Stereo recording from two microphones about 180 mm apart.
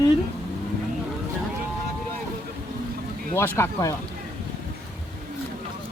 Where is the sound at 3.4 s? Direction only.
15° left (ahead or behind).